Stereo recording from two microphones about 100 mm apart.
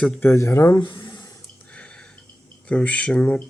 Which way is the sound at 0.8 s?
55° left (ahead or behind).